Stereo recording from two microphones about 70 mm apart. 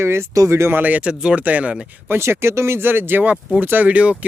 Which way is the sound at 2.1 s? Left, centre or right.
Right.